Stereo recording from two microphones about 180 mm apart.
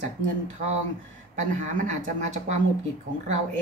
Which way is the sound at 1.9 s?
40° right (ahead or behind).